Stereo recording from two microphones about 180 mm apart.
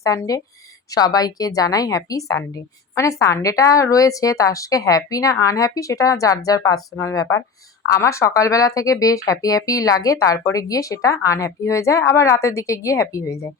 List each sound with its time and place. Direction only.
0.0 s a woman's voice: 20° left (ahead or behind)